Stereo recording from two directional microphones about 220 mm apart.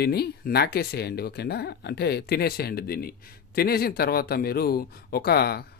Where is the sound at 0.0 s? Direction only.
45° left (ahead or behind).